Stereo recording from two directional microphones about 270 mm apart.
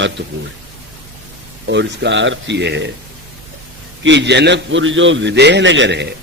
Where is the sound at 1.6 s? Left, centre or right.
Right.